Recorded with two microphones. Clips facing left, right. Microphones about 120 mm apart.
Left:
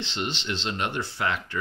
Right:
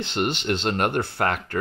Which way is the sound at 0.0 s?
55° right (ahead or behind).